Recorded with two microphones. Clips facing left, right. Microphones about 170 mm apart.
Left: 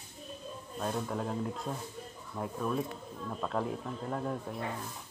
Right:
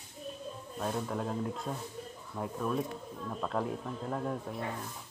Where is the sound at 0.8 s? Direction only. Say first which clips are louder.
Even; centre (ahead or behind).